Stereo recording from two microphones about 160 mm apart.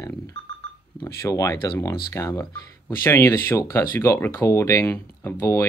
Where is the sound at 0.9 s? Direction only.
20° left (ahead or behind).